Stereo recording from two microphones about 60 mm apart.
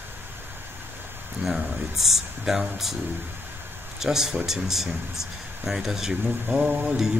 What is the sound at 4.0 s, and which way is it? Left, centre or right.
Speech, centre.